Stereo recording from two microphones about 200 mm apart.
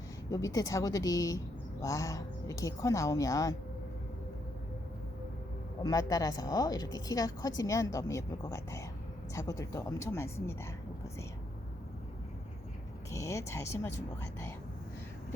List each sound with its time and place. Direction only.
0.3 s a woman's voice: 15° left (ahead or behind)
5.8 s a woman's voice: 20° left (ahead or behind)
13.1 s a woman's voice: 15° left (ahead or behind)